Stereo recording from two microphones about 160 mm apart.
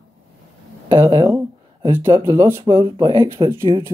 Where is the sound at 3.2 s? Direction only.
15° right (ahead or behind).